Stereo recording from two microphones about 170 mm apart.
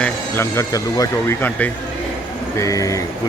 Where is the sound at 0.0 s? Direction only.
15° left (ahead or behind).